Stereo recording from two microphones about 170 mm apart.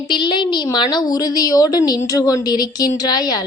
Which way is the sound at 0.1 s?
25° left (ahead or behind).